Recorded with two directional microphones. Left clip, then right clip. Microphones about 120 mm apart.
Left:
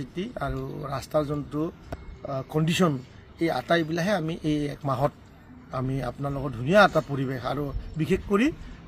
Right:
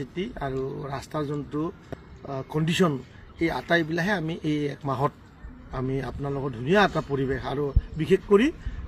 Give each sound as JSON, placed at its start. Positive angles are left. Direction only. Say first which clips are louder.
{"t": 0.0, "sound": "a man's voice", "louder": "even", "side_deg": 45}